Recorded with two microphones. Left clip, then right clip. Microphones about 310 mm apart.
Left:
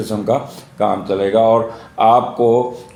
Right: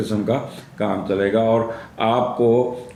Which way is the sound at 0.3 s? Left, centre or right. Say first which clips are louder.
Left 5 dB; centre.